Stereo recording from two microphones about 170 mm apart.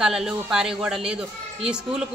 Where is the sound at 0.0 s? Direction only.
5° right (ahead or behind).